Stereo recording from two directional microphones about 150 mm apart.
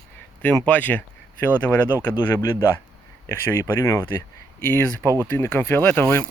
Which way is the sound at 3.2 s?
15° left (ahead or behind).